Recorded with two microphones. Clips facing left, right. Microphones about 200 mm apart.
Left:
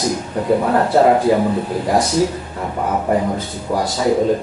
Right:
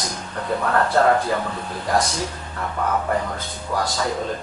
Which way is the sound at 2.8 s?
20° left (ahead or behind).